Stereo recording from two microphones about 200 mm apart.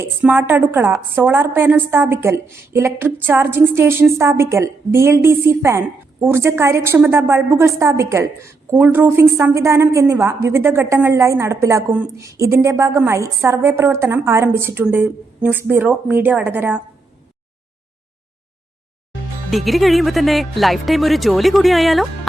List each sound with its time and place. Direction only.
0.0 s a woman's voice: 5° right (ahead or behind)
19.5 s speech: centre (ahead or behind)